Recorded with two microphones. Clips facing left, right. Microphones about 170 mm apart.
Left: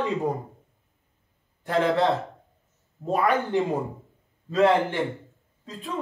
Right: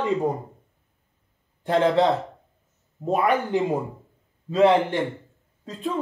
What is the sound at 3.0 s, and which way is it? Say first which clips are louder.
Speech: right 3 dB; 20° right (ahead or behind).